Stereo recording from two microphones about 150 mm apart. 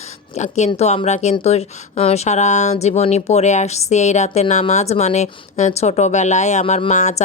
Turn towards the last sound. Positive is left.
turn(degrees=50)  # may be behind; listen again after turning